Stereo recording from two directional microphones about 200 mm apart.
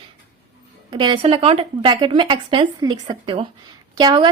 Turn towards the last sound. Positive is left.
turn(degrees=-20)  # may be behind; listen again after turning